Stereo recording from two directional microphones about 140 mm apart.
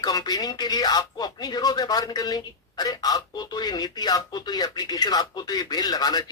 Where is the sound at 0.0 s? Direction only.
30° left (ahead or behind).